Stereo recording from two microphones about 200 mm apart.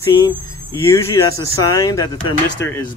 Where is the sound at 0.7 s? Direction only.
15° left (ahead or behind).